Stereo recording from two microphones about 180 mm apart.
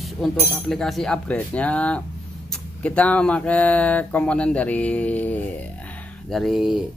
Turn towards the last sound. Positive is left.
turn(degrees=0)  # may be behind; listen again after turning